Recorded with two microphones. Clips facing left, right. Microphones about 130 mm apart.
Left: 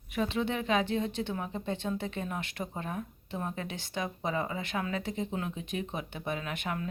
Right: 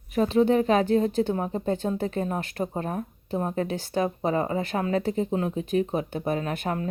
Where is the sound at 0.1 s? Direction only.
40° right (ahead or behind).